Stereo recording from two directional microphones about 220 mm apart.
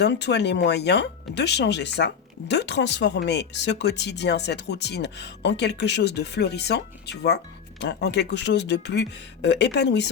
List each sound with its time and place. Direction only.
0.0 s speech: 50° left (ahead or behind)